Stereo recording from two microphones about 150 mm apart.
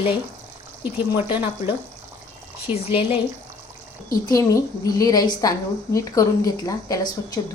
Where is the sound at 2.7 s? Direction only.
40° left (ahead or behind).